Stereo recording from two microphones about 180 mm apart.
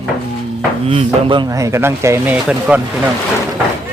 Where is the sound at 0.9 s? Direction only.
25° right (ahead or behind); by 2.8 s 5° right (ahead or behind).